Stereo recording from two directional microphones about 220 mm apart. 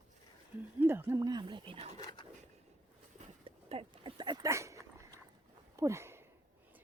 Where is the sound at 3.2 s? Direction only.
25° right (ahead or behind).